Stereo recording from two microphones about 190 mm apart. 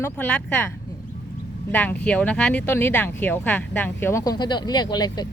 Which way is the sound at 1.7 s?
10° left (ahead or behind).